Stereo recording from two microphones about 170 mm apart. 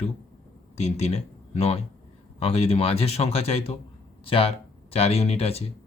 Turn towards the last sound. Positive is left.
turn(degrees=35)  # may be behind; listen again after turning